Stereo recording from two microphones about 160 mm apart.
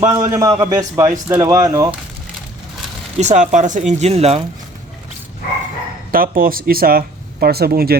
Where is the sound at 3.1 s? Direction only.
45° right (ahead or behind).